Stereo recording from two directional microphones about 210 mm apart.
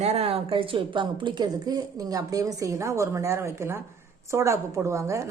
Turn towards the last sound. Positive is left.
turn(degrees=-15)  # may be behind; listen again after turning